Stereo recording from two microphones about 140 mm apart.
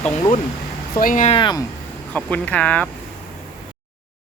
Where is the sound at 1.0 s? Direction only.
80° left.